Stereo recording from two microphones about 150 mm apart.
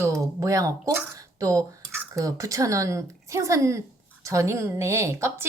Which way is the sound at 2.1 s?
20° right (ahead or behind).